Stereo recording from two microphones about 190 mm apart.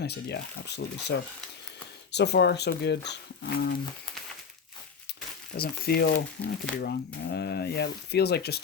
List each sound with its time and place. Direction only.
0.0 s speech: 60° left (ahead or behind)
2.1 s speech: 60° left (ahead or behind)
5.5 s speech: 55° left (ahead or behind)